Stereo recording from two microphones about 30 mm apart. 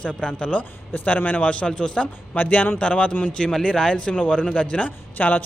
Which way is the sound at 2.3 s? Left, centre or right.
Left.